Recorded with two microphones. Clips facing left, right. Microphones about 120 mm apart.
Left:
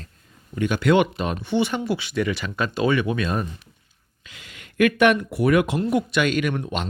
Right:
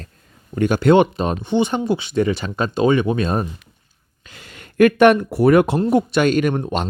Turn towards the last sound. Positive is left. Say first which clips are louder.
# right 5 dB
turn(degrees=-35)  # may be behind; listen again after turning